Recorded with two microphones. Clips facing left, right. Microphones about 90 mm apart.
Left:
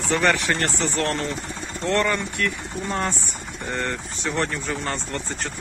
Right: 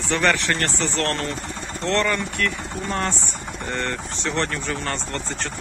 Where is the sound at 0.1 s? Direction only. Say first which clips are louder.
Even; 15° left (ahead or behind).